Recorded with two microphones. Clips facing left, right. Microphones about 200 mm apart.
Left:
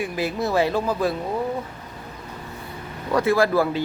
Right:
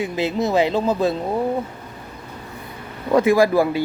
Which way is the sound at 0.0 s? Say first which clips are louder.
Right 3 dB; 20° right (ahead or behind).